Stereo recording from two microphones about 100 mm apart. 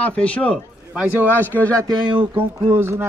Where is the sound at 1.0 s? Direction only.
20° right (ahead or behind).